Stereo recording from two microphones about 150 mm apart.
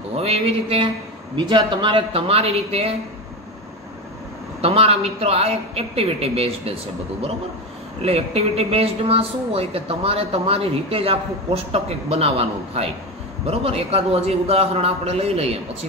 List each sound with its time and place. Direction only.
0.1 s a woman's voice: 40° right (ahead or behind)
4.6 s a woman's voice: 40° right (ahead or behind)
8.0 s a woman's voice: 40° right (ahead or behind)